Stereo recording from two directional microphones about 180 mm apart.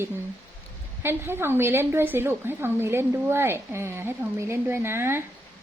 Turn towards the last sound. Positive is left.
turn(degrees=-15)  # may be behind; listen again after turning